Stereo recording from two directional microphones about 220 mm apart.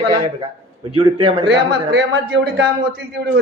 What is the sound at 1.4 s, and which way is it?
Speech, 50° right (ahead or behind).